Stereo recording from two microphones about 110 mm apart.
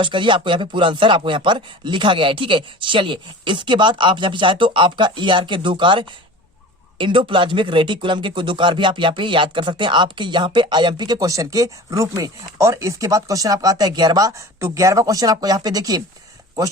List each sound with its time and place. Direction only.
0.0 s speech: 50° right (ahead or behind)